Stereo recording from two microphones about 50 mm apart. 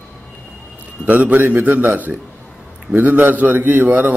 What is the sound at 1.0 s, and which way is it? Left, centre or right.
A man's voice, right.